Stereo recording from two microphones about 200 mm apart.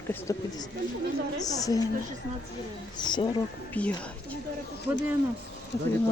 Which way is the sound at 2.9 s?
20° left (ahead or behind).